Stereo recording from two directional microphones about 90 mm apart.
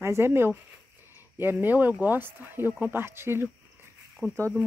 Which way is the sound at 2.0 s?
20° right (ahead or behind).